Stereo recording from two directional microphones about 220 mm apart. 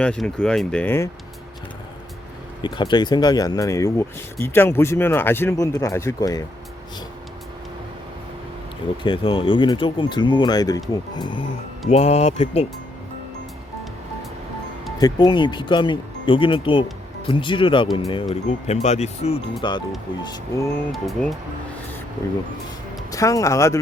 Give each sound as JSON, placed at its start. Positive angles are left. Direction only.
{"t": 0.0, "sound": "speech", "side_deg": 5}
{"t": 2.6, "sound": "speech", "side_deg": 20}
{"t": 9.0, "sound": "speech", "side_deg": 25}
{"t": 14.9, "sound": "speech", "side_deg": 20}
{"t": 20.9, "sound": "speech", "side_deg": 0}
{"t": 23.1, "sound": "speech", "side_deg": 15}